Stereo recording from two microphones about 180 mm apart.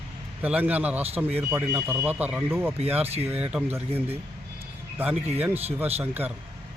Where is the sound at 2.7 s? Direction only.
35° right (ahead or behind).